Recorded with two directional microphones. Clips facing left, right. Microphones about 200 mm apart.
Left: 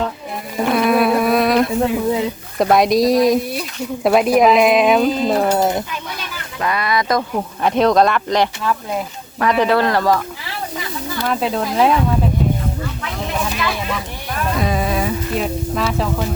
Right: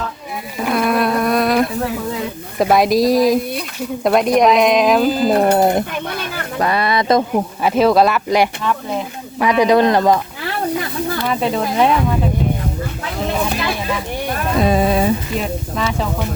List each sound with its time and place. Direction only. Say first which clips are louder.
0.6 s a sound: left 2 dB; centre (ahead or behind)
1.8 s speech: left 5 dB; 20° left (ahead or behind)
2.6 s speech: even; centre (ahead or behind)
5.5 s speech: right 3 dB; 55° right (ahead or behind)
5.9 s a sound: right 5 dB; 55° right (ahead or behind)
6.6 s speech: right 2 dB; 30° right (ahead or behind)
7.6 s a man's voice: right 1 dB; 5° right (ahead or behind)
11.3 s speech: left 1 dB; centre (ahead or behind)
14.6 s a sound: right 6 dB; 30° right (ahead or behind)
15.3 s speech: left 2 dB; centre (ahead or behind)